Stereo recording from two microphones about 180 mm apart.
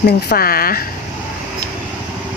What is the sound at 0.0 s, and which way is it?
Speech, 60° left (ahead or behind).